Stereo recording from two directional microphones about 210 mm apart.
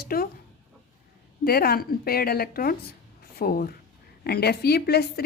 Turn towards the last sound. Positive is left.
turn(degrees=50)  # may be behind; listen again after turning